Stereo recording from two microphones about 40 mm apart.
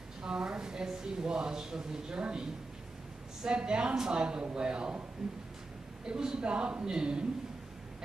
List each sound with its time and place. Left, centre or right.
0.2 s speech: centre
3.4 s speech: right
5.2 s speech: centre
6.0 s speech: centre